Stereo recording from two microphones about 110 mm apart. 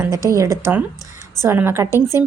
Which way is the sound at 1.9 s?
35° left (ahead or behind).